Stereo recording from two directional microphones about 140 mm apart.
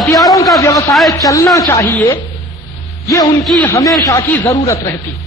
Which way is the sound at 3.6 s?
20° left (ahead or behind).